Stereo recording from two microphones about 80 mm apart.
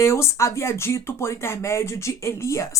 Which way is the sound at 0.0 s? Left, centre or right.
Left.